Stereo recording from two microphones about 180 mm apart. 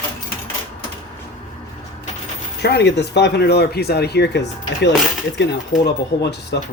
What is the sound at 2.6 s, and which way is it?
Speech, 65° left (ahead or behind).